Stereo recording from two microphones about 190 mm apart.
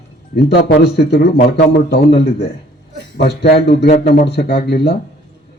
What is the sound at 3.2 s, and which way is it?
A man's voice, 60° left (ahead or behind).